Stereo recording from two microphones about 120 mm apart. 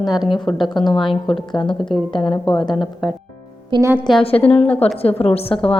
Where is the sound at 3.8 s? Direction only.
20° right (ahead or behind).